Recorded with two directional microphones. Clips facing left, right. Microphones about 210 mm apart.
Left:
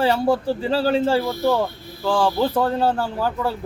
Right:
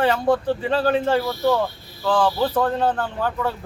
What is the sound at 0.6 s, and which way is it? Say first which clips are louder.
Speech: left 1 dB; 30° left (ahead or behind).